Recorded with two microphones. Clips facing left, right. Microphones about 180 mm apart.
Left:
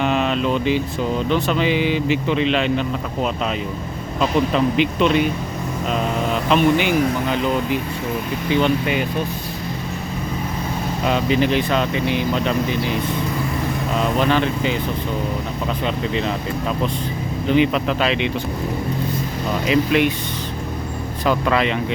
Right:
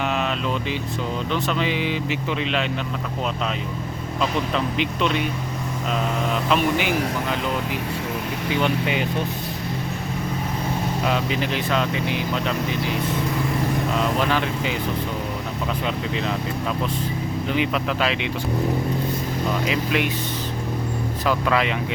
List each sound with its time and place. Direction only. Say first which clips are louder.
0.0 s vehicle: left 5 dB; centre (ahead or behind)
1.3 s speech: left 4 dB; centre (ahead or behind)
4.5 s speech: left 6 dB; 5° left (ahead or behind)
6.5 s speech: left 6 dB; 5° right (ahead or behind)
8.6 s speech: left 3 dB; 20° right (ahead or behind)
11.0 s speech: left 8 dB; centre (ahead or behind)
14.3 s speech: left 5 dB; 5° right (ahead or behind)
17.5 s speech: left 7 dB; 5° right (ahead or behind)
19.6 s speech: left 10 dB; 5° right (ahead or behind)
21.2 s speech: left 3 dB; 5° right (ahead or behind)